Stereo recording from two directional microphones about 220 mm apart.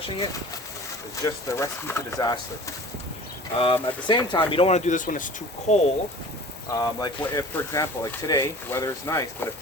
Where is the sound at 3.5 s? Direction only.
25° left (ahead or behind).